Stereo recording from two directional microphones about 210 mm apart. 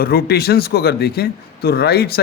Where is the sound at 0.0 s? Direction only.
45° left (ahead or behind).